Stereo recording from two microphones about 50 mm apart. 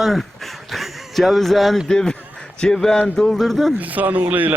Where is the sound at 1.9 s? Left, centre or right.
Centre.